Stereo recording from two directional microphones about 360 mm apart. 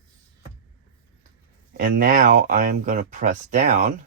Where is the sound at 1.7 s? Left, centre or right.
Right.